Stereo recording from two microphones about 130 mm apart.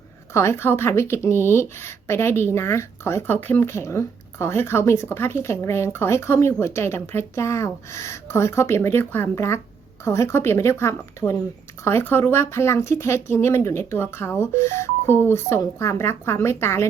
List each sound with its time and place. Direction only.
0.3 s speech: 20° left (ahead or behind)